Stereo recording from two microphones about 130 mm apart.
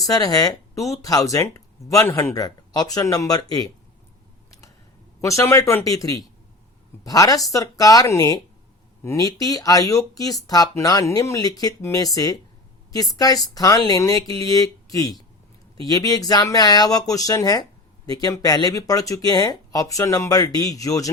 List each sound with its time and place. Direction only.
0.0 s speech: 30° left (ahead or behind)
5.2 s speech: 20° left (ahead or behind)